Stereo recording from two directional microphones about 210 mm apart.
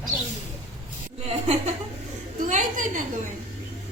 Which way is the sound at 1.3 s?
30° right (ahead or behind).